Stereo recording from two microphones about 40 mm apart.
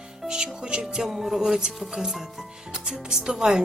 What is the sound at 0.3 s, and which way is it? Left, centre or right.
Music, right.